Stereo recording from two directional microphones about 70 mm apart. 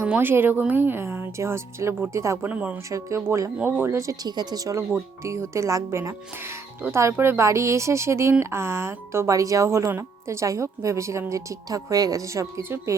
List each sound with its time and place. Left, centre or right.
0.0 s speech: right
2.5 s speech: right
3.2 s speech: right
3.8 s speech: right
4.3 s speech: right
4.9 s speech: right
12.6 s speech: right